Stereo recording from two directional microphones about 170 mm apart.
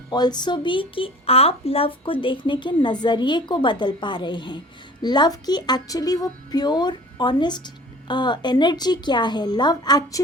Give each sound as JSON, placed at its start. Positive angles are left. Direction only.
{"t": 0.1, "sound": "a woman's voice", "side_deg": 25}